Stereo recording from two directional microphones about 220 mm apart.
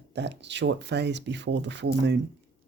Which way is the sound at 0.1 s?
50° right (ahead or behind).